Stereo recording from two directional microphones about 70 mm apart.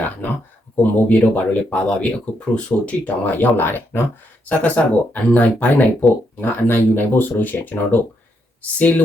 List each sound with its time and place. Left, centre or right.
0.8 s speech: left